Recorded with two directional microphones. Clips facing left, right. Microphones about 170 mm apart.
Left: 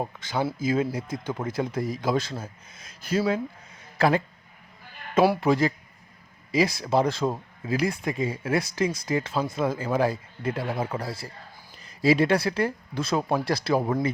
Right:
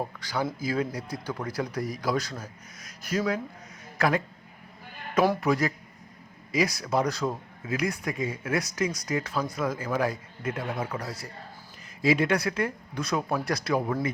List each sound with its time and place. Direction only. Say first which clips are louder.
0.0 s speech: left 2 dB; 20° left (ahead or behind)
5.4 s speech: left 3 dB; 25° left (ahead or behind)